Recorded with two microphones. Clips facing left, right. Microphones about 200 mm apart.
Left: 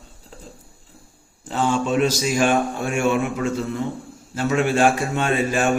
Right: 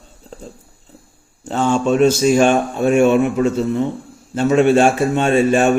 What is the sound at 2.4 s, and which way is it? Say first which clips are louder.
A man's voice: right 5 dB; 25° right (ahead or behind).